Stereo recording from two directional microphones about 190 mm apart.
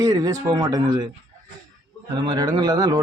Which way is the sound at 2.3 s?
20° right (ahead or behind).